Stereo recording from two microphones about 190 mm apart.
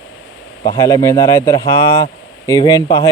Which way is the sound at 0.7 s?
20° left (ahead or behind).